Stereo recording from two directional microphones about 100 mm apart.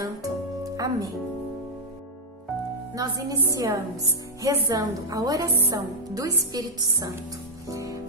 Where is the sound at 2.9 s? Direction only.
35° right (ahead or behind).